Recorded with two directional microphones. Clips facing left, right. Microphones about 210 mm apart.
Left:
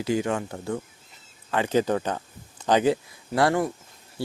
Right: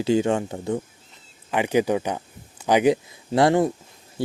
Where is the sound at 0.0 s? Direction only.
25° right (ahead or behind).